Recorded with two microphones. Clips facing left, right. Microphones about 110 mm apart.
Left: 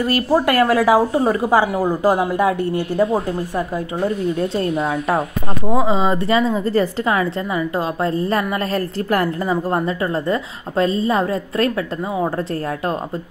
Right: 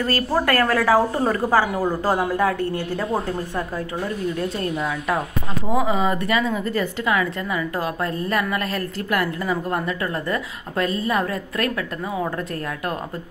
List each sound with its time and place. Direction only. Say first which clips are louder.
0.0 s a woman's voice: left 5 dB; 15° left (ahead or behind)
4.4 s a woman's voice: left 5 dB; 30° left (ahead or behind)